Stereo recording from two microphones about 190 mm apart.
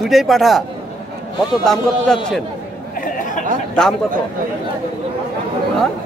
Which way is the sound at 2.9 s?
45° left (ahead or behind).